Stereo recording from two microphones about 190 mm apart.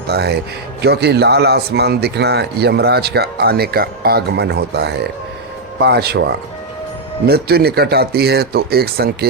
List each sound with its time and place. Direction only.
0.1 s a man's voice: 60° right (ahead or behind)